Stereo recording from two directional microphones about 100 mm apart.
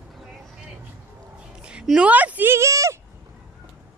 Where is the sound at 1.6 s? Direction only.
10° right (ahead or behind); by 3.0 s 30° right (ahead or behind).